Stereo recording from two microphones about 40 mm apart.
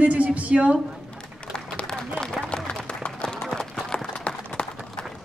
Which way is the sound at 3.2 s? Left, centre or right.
Centre.